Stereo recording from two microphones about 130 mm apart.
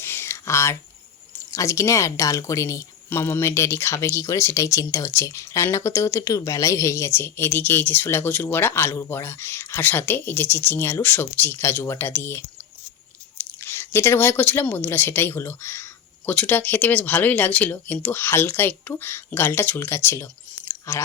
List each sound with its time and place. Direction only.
0.0 s a sound: 20° left (ahead or behind)
1.5 s a woman's voice: 25° left (ahead or behind)
13.4 s speech: 20° left (ahead or behind)